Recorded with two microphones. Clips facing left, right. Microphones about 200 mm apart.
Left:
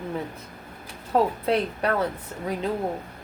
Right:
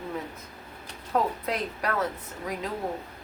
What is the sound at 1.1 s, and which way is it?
Speech, 30° left (ahead or behind).